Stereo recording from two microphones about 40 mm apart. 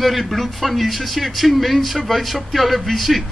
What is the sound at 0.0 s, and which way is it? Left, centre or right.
Speech, centre.